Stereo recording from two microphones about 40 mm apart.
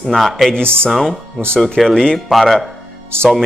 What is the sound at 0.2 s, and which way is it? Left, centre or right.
Speech, centre.